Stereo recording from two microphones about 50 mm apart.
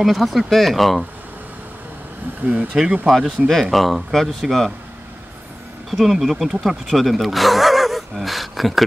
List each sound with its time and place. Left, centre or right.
0.0 s speech: centre
2.4 s speech: right
3.1 s speech: centre
5.9 s speech: centre